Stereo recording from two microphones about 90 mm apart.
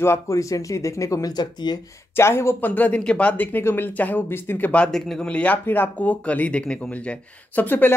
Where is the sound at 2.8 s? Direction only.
15° left (ahead or behind).